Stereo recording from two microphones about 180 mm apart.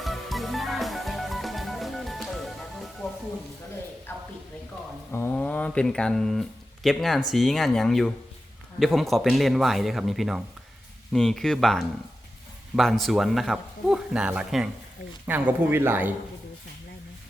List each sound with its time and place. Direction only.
0.0 s music: centre (ahead or behind)
4.1 s a sound: 10° left (ahead or behind)
5.1 s speech: 10° left (ahead or behind); by 16.1 s 10° right (ahead or behind)